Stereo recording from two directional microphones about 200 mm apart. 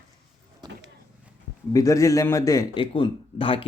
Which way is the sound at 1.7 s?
15° left (ahead or behind).